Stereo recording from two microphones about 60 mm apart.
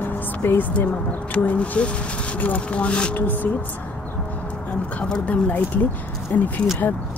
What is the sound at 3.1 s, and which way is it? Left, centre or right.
Speech, left.